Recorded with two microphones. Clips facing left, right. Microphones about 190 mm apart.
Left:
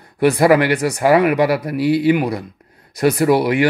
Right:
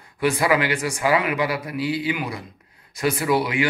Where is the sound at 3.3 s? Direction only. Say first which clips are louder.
Left 4 dB; 60° left (ahead or behind).